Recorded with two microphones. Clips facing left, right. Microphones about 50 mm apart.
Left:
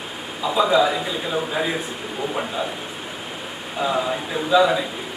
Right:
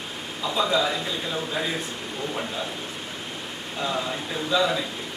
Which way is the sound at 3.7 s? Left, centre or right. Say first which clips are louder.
Left 6 dB; centre.